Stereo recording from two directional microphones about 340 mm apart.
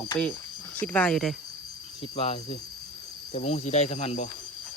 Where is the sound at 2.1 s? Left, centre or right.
Centre.